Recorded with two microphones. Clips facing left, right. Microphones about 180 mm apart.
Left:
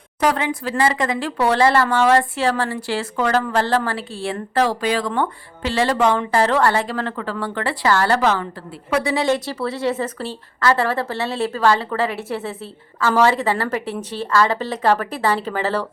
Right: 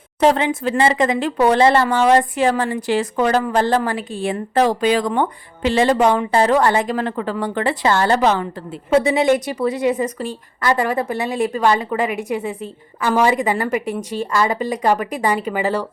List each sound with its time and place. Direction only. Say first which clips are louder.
0.2 s a woman's voice: right 4 dB; 25° right (ahead or behind)